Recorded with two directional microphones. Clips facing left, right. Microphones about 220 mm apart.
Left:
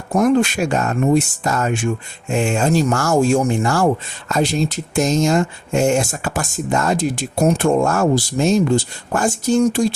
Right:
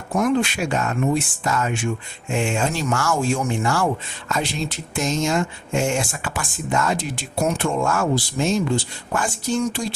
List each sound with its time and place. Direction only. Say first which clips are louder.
0.1 s speech: left 5 dB; 40° left (ahead or behind)